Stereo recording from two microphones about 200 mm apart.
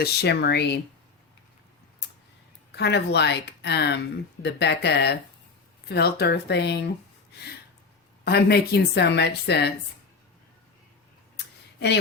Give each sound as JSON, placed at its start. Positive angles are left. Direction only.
{"t": 0.0, "sound": "speech", "side_deg": 55}
{"t": 2.7, "sound": "speech", "side_deg": 60}
{"t": 8.2, "sound": "speech", "side_deg": 50}